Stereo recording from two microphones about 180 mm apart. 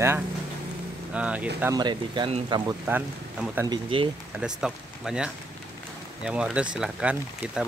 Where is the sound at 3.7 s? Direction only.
30° right (ahead or behind).